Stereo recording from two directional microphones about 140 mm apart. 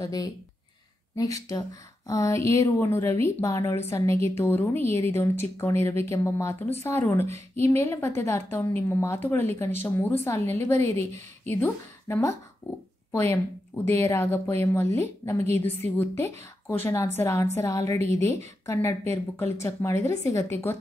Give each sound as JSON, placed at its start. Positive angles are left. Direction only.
{"t": 0.0, "sound": "a woman's voice", "side_deg": 25}